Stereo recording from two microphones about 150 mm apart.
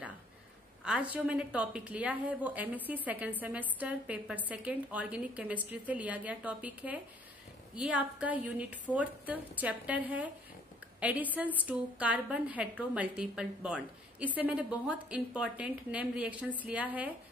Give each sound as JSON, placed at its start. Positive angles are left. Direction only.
{"t": 0.8, "sound": "a woman's voice", "side_deg": -10}